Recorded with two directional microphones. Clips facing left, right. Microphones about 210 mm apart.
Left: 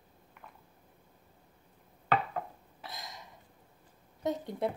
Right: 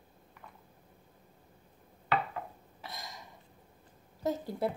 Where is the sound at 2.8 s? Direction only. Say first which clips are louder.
Even; centre (ahead or behind).